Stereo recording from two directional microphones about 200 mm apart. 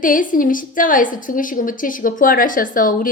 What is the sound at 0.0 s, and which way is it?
A woman's voice, 40° left (ahead or behind).